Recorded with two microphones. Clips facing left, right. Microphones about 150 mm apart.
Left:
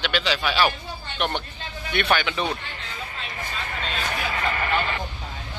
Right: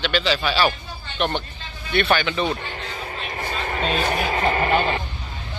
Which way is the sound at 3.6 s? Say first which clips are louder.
Right 8 dB; 45° right (ahead or behind).